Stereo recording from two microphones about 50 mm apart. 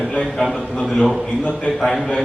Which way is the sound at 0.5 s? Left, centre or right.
Centre.